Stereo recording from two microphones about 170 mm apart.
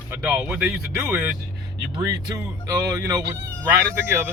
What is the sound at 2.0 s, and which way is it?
Speech, 20° right (ahead or behind).